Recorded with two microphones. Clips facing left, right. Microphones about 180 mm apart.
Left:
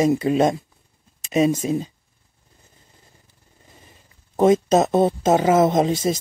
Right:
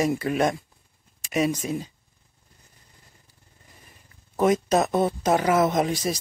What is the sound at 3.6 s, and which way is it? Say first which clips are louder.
Speech: left 4 dB; 25° left (ahead or behind).